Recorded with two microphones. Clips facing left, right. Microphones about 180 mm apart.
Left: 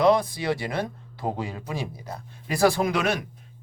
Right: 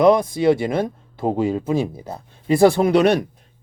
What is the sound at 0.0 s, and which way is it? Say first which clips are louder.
Speech: right 6 dB; 20° right (ahead or behind).